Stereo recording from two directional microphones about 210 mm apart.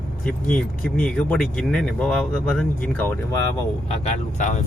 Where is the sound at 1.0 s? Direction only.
5° left (ahead or behind).